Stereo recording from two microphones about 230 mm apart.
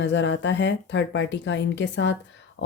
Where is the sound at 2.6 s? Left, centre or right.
Left.